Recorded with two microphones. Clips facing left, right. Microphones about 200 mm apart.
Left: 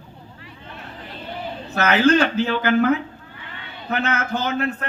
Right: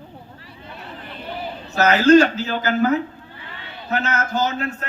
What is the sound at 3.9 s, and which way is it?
Speech, 55° left (ahead or behind).